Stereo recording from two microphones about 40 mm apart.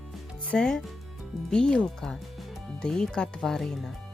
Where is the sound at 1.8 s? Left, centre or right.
Centre.